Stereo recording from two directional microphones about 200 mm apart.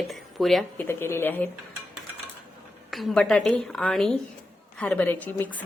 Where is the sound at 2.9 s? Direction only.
Centre (ahead or behind).